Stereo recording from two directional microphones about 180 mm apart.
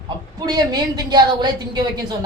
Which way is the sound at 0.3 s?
20° right (ahead or behind).